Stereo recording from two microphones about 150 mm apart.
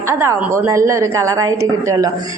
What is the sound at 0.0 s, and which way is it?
A woman's voice, 20° right (ahead or behind).